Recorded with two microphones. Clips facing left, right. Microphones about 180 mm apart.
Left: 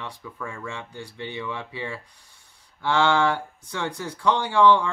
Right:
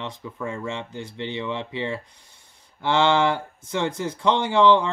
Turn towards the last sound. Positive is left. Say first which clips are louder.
# right 1 dB
turn(degrees=-20)  # may be behind; listen again after turning